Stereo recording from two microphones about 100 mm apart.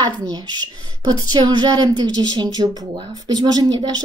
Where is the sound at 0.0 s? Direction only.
45° right (ahead or behind).